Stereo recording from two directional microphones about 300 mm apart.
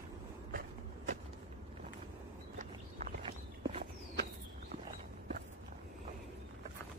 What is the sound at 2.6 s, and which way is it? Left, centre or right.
Walk, right.